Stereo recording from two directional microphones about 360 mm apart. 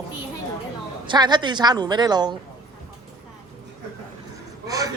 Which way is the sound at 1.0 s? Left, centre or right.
Centre.